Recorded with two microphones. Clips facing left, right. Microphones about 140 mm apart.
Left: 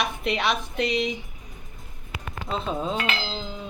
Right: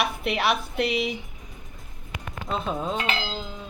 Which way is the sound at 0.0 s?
5° right (ahead or behind).